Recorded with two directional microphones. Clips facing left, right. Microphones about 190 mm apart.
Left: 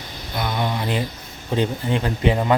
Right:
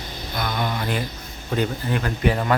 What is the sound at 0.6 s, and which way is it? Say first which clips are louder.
Speech: left 2 dB; 20° left (ahead or behind).